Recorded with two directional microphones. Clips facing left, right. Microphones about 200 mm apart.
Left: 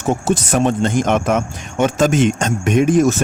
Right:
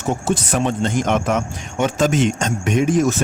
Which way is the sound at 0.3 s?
45° left (ahead or behind).